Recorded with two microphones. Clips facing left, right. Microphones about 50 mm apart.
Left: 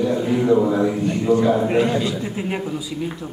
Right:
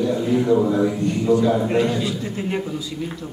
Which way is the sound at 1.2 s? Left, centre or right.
Left.